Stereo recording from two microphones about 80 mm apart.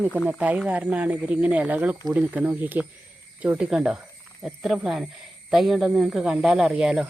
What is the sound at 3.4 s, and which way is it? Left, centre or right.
Speech, centre.